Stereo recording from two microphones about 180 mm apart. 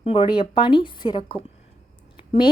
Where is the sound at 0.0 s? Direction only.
30° left (ahead or behind).